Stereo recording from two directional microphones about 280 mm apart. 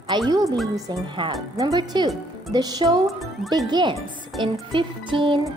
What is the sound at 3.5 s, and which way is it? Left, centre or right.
Speech, centre.